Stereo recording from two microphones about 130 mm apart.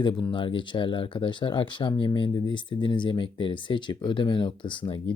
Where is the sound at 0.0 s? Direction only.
35° left (ahead or behind).